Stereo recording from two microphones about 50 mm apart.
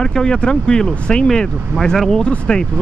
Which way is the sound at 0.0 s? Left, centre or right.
Centre.